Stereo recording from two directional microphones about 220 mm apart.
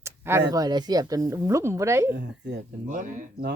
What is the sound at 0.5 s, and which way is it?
Speech, 20° right (ahead or behind).